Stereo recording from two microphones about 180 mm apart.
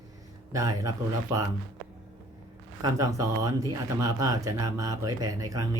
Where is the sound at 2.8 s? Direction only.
20° right (ahead or behind).